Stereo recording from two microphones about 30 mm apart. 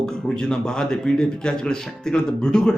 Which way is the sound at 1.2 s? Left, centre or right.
Left.